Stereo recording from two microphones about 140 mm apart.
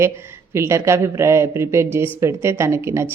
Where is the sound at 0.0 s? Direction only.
20° right (ahead or behind).